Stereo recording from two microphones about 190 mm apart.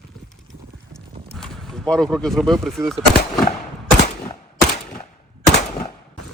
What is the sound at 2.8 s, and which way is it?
Speech, 15° right (ahead or behind).